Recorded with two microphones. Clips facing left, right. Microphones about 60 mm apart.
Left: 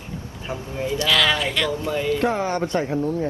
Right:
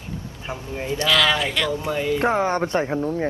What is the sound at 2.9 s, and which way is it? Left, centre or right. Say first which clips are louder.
Speech: even; right.